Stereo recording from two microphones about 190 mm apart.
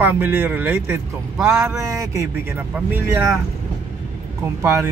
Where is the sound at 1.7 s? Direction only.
15° right (ahead or behind).